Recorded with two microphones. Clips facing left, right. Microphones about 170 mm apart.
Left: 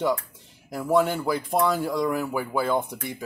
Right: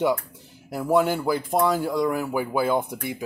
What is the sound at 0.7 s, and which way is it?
Speech, 5° right (ahead or behind).